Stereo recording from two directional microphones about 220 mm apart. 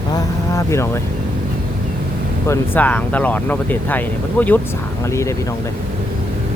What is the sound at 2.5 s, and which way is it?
Speech, 10° left (ahead or behind).